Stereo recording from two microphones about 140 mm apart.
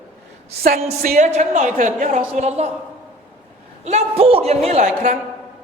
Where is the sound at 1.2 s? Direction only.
55° right (ahead or behind).